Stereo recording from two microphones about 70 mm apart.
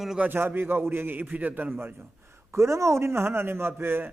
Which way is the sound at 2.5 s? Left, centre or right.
Right.